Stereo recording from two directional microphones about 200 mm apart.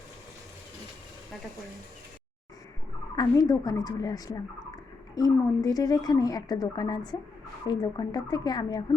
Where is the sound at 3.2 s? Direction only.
15° left (ahead or behind).